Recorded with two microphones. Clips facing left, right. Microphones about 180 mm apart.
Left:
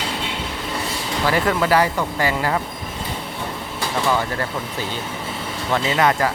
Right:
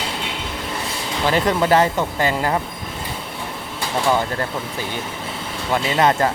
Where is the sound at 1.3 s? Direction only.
20° right (ahead or behind).